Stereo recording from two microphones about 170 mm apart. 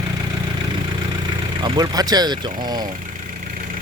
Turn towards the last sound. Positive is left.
turn(degrees=-25)  # may be behind; listen again after turning